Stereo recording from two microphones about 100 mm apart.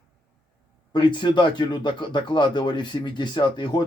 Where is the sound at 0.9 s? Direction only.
50° left (ahead or behind).